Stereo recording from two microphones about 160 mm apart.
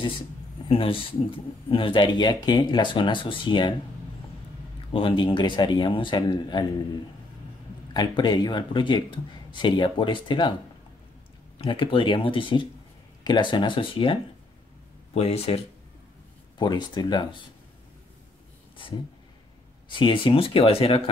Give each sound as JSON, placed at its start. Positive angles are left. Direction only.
{"t": 0.7, "sound": "speech", "side_deg": 35}
{"t": 4.9, "sound": "speech", "side_deg": 30}
{"t": 7.9, "sound": "speech", "side_deg": 25}
{"t": 11.5, "sound": "speech", "side_deg": 30}
{"t": 15.1, "sound": "speech", "side_deg": 40}
{"t": 16.5, "sound": "speech", "side_deg": 25}
{"t": 19.9, "sound": "speech", "side_deg": 30}